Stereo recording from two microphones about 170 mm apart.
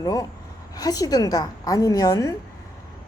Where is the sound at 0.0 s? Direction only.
20° left (ahead or behind).